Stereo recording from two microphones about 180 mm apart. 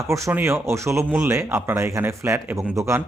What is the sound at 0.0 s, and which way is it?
A man's voice, 15° right (ahead or behind).